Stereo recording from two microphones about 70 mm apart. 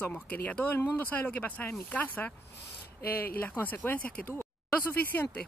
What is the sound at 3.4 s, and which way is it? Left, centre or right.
Speech, left.